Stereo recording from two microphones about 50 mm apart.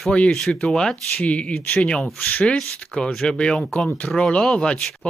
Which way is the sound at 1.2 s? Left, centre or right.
Left.